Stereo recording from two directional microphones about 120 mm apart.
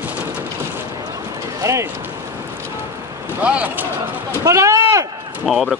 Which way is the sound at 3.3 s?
10° right (ahead or behind).